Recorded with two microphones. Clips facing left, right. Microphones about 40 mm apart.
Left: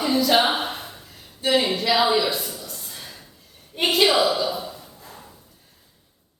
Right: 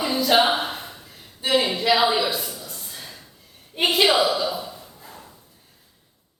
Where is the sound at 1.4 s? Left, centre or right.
Centre.